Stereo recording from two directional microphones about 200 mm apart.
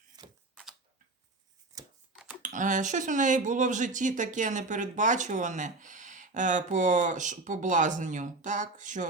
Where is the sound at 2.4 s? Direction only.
40° right (ahead or behind).